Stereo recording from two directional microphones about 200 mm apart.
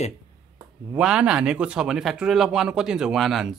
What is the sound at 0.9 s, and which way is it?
Speech, 5° right (ahead or behind).